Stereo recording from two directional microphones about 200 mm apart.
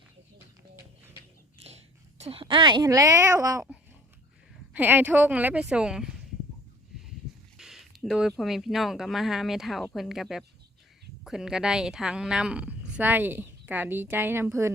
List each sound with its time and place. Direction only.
1.5 s a woman's voice: 30° right (ahead or behind); by 6.1 s 5° right (ahead or behind)
7.5 s a sound: centre (ahead or behind)
8.3 s speech: centre (ahead or behind)